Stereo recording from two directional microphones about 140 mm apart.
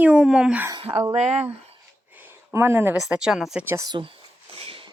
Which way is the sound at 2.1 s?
15° right (ahead or behind).